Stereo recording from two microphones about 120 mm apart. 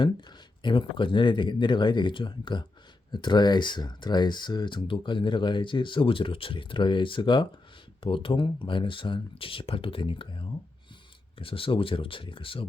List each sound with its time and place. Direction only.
0.0 s speech: 40° left (ahead or behind)